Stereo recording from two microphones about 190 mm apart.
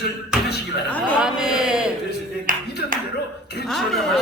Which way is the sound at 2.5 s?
45° right (ahead or behind).